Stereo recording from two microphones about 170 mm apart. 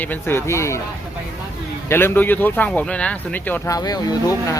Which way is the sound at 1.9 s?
10° left (ahead or behind).